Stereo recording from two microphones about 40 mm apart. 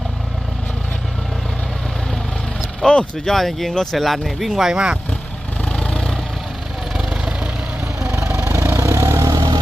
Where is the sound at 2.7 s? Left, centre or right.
Centre.